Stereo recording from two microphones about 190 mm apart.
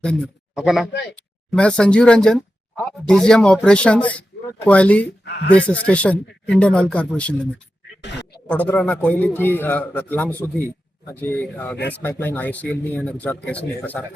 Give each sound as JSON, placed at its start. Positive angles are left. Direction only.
{"t": 0.0, "sound": "a man's voice", "side_deg": 5}
{"t": 8.0, "sound": "a sound", "side_deg": 65}
{"t": 8.4, "sound": "a man's voice", "side_deg": 10}